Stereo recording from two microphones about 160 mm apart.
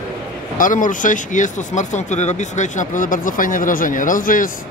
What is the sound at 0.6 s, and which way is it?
Speech, 55° left (ahead or behind).